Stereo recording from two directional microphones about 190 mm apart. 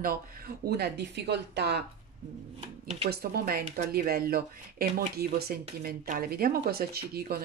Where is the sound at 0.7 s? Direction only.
60° right (ahead or behind).